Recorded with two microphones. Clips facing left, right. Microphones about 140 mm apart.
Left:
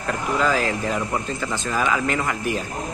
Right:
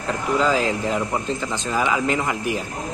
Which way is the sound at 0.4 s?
20° right (ahead or behind).